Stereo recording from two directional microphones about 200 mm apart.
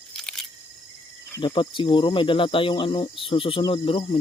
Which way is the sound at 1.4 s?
25° left (ahead or behind).